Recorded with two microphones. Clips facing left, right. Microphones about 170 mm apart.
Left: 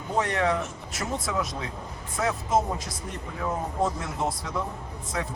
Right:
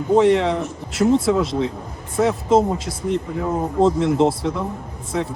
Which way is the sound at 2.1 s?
25° right (ahead or behind).